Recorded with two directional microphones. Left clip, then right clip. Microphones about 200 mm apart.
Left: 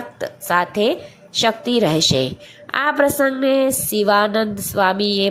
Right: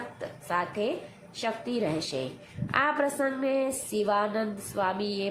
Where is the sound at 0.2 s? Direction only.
30° left (ahead or behind).